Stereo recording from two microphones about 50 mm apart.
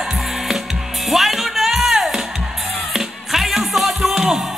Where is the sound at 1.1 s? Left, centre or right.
Centre.